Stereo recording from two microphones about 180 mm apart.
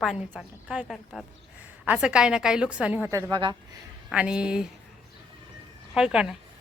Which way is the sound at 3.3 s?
25° right (ahead or behind).